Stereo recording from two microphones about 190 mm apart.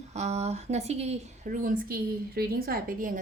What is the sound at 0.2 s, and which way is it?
A woman's voice, 35° right (ahead or behind).